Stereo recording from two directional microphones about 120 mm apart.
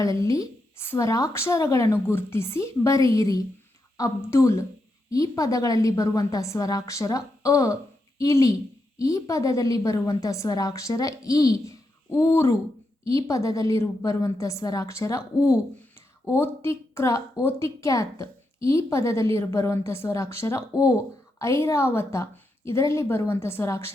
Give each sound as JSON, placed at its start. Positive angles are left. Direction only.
{"t": 0.0, "sound": "a woman's voice", "side_deg": 25}
{"t": 16.2, "sound": "a woman's voice", "side_deg": 20}